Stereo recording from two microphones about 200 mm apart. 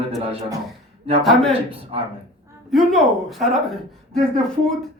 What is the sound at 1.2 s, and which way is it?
Speech, centre (ahead or behind).